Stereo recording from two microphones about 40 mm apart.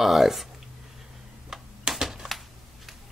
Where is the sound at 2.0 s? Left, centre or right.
Centre.